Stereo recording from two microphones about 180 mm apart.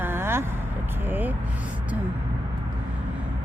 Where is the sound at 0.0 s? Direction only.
15° right (ahead or behind).